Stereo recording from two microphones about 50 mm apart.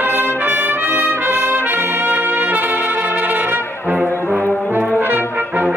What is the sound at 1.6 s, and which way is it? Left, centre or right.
Brass instrument, right.